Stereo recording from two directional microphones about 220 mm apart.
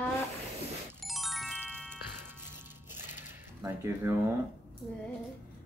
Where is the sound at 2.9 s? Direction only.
10° right (ahead or behind).